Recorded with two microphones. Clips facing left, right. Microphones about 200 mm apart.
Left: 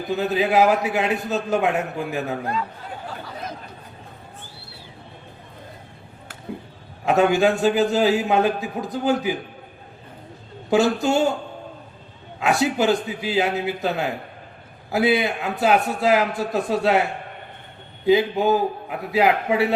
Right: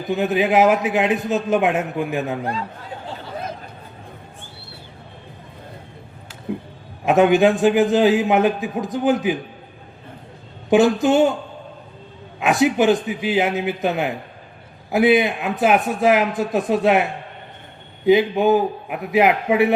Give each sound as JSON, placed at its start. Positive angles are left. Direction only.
{"t": 0.0, "sound": "a man's voice", "side_deg": -20}
{"t": 7.0, "sound": "a man's voice", "side_deg": -20}
{"t": 10.7, "sound": "a man's voice", "side_deg": -20}
{"t": 12.4, "sound": "a man's voice", "side_deg": -20}